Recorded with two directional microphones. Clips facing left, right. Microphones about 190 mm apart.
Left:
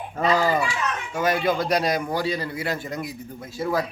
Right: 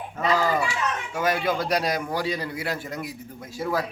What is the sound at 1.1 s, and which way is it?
A man's voice, 10° right (ahead or behind).